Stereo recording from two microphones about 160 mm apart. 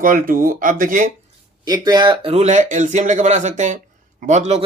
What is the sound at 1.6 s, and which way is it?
A man's voice, 25° right (ahead or behind).